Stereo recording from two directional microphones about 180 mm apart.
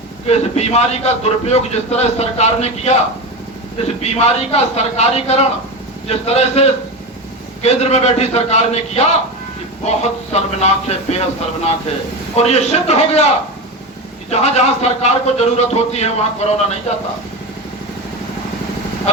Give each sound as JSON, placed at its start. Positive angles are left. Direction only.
{"t": 0.3, "sound": "a man's voice", "side_deg": 35}
{"t": 4.0, "sound": "a man's voice", "side_deg": 35}
{"t": 12.4, "sound": "a man's voice", "side_deg": 35}
{"t": 14.3, "sound": "a man's voice", "side_deg": 35}
{"t": 19.1, "sound": "a man's voice", "side_deg": 40}